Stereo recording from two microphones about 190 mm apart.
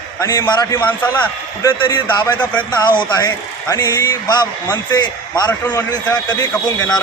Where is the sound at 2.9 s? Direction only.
20° left (ahead or behind).